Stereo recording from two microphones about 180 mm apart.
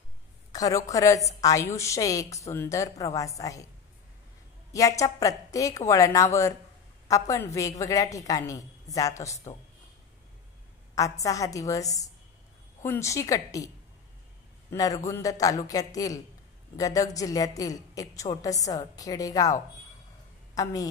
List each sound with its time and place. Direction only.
0.5 s a woman's voice: 20° left (ahead or behind)
4.7 s a woman's voice: 20° left (ahead or behind)
11.0 s a woman's voice: 20° left (ahead or behind)
14.7 s a woman's voice: 20° left (ahead or behind)